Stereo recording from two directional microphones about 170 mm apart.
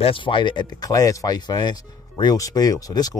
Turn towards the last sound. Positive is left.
turn(degrees=20)  # may be behind; listen again after turning